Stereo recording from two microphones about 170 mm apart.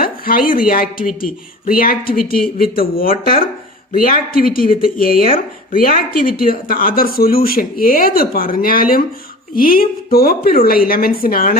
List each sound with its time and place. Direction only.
0.0 s speech: 60° left (ahead or behind)